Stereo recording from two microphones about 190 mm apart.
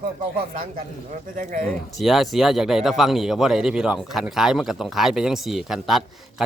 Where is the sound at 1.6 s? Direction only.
Centre (ahead or behind).